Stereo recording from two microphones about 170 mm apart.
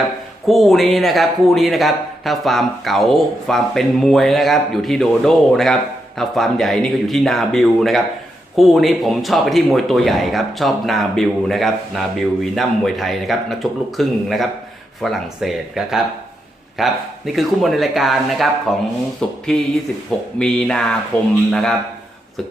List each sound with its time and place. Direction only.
0.4 s speech: centre (ahead or behind)
20.4 s speech: 5° left (ahead or behind)